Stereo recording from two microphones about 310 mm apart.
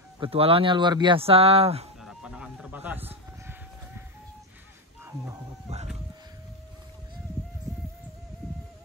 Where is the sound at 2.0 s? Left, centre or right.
Centre.